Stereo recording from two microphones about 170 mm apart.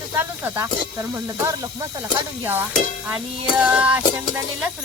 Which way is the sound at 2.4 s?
10° right (ahead or behind).